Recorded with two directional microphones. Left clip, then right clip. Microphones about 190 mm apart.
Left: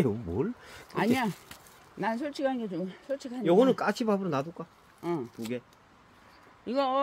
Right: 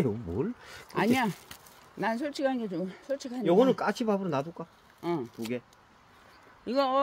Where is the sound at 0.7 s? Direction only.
15° right (ahead or behind).